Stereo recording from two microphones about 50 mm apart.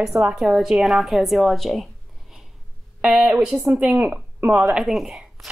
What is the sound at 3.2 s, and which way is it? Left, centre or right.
A woman's voice, right.